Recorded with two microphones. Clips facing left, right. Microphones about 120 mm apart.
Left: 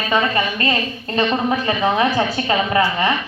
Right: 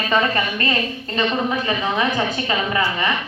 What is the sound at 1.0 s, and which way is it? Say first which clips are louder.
A woman's voice: left 4 dB; 35° left (ahead or behind).